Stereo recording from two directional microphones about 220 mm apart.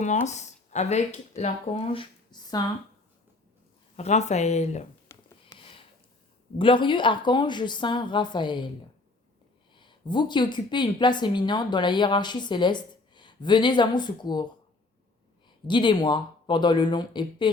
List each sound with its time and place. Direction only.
0.0 s speech: 30° left (ahead or behind)
3.9 s speech: 30° left (ahead or behind)
5.0 s a sound: 15° left (ahead or behind)
6.6 s speech: 20° left (ahead or behind)
9.7 s speech: 20° left (ahead or behind)
15.6 s speech: 20° left (ahead or behind)